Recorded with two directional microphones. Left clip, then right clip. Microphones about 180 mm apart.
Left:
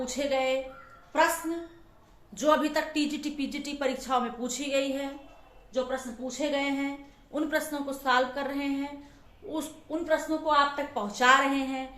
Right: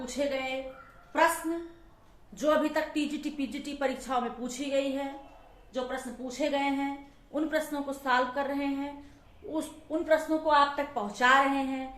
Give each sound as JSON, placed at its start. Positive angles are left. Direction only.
{"t": 0.0, "sound": "a woman's voice", "side_deg": 20}
{"t": 2.4, "sound": "a woman's voice", "side_deg": 25}